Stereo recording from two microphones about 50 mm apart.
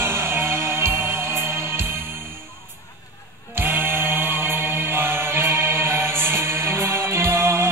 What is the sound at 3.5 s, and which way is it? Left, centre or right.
Music, right.